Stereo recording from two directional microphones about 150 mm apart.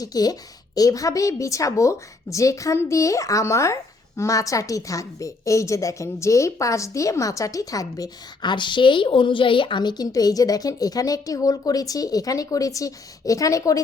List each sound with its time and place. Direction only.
0.0 s a woman's voice: 25° left (ahead or behind)